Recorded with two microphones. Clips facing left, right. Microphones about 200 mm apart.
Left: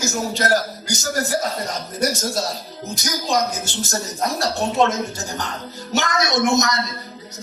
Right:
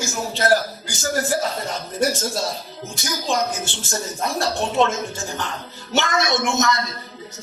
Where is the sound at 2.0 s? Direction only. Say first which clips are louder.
Even; 40° left (ahead or behind).